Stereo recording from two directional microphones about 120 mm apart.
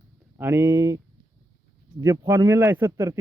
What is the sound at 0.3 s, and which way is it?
Speech, 20° right (ahead or behind).